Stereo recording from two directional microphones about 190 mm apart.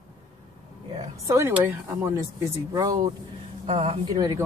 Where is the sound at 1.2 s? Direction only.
15° right (ahead or behind).